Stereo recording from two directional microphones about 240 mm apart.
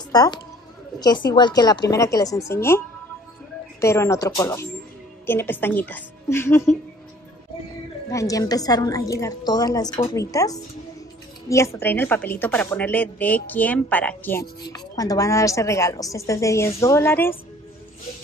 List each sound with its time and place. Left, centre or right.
0.1 s speech: centre
3.8 s speech: centre
8.1 s speech: centre